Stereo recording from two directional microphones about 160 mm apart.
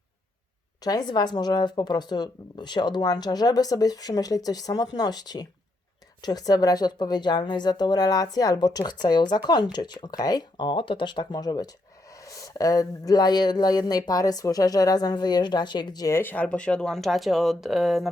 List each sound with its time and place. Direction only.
0.8 s speech: 25° left (ahead or behind); by 18.1 s centre (ahead or behind)